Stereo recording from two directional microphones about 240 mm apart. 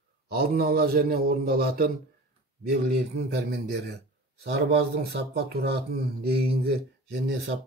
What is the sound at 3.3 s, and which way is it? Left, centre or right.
Speech, right.